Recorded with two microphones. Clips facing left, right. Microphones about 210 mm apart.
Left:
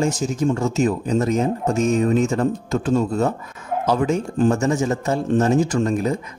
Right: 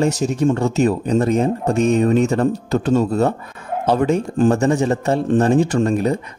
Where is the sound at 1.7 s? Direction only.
60° right (ahead or behind).